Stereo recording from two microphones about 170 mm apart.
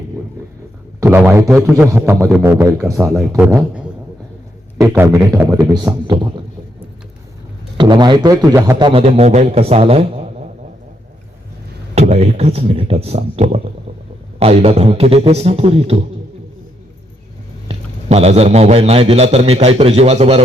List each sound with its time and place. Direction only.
0.9 s a man's voice: 15° right (ahead or behind)
7.8 s a man's voice: 25° right (ahead or behind)
8.9 s a man's voice: 35° right (ahead or behind)
11.9 s a man's voice: 40° right (ahead or behind)
17.7 s a man's voice: 40° right (ahead or behind)